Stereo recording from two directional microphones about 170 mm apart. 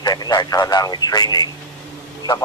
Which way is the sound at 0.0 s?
25° left (ahead or behind).